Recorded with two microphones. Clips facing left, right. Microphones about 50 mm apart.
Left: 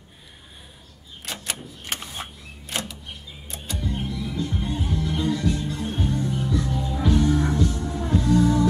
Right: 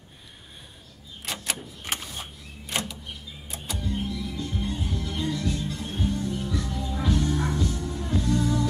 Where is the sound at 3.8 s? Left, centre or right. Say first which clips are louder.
Left 1 dB; left.